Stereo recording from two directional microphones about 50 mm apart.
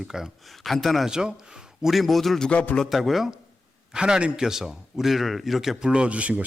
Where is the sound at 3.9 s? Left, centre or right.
Centre.